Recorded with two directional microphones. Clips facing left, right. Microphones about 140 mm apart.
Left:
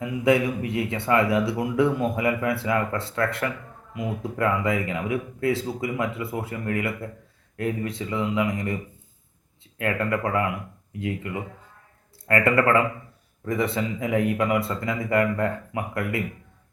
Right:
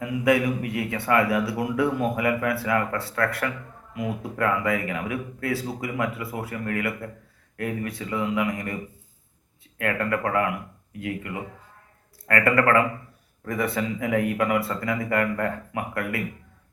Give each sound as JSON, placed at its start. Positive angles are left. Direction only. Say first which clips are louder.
{"t": 0.0, "sound": "a man's voice", "louder": "left 1 dB", "side_deg": 25}